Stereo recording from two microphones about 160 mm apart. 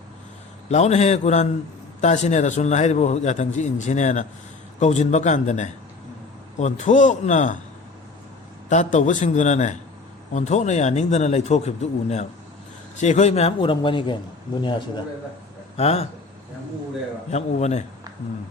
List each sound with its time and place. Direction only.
0.7 s a man's voice: 45° left (ahead or behind)
8.7 s a man's voice: 50° left (ahead or behind)
17.3 s a man's voice: 45° left (ahead or behind)